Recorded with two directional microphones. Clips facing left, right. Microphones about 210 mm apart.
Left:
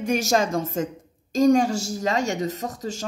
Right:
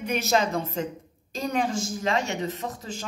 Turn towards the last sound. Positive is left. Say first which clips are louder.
# left 4 dB
turn(degrees=40)  # may be behind; listen again after turning